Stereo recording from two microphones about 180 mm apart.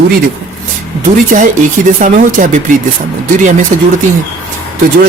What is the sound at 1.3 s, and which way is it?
Speech, 45° right (ahead or behind).